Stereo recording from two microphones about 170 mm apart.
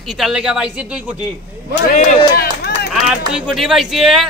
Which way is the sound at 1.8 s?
60° left (ahead or behind).